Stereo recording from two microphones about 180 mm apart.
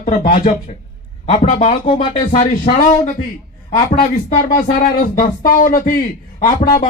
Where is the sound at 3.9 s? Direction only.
45° left (ahead or behind).